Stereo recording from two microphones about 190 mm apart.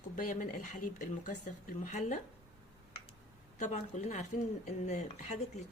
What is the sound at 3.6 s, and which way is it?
Speech, 40° left (ahead or behind).